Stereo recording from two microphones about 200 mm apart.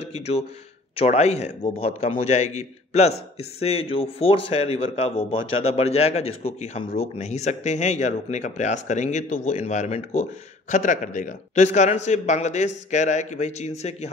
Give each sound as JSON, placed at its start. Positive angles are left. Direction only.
{"t": 0.9, "sound": "a man's voice", "side_deg": 30}